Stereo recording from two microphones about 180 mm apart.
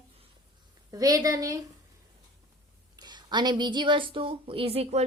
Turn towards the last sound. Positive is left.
turn(degrees=-35)  # may be behind; listen again after turning